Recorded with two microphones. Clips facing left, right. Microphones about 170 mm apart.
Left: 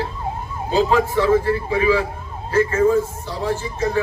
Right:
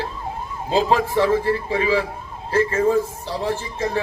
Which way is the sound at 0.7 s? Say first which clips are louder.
Left 1 dB; 30° right (ahead or behind).